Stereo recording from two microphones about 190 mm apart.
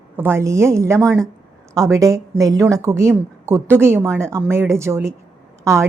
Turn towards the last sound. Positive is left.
turn(degrees=-15)  # may be behind; listen again after turning